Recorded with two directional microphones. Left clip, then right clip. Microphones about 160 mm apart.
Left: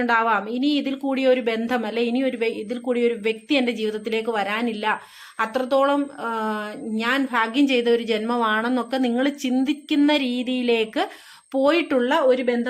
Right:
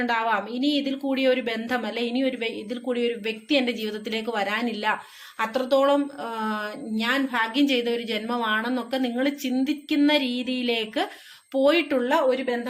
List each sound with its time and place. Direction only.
0.0 s speech: 30° left (ahead or behind); by 12.5 s 55° left (ahead or behind)